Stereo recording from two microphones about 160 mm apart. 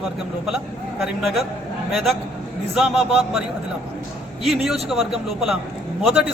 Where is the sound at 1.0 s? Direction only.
Centre (ahead or behind).